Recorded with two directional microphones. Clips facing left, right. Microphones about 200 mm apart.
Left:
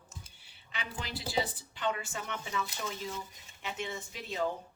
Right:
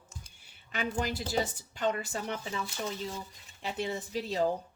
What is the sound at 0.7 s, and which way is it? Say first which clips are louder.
Speech: right 8 dB; 45° right (ahead or behind).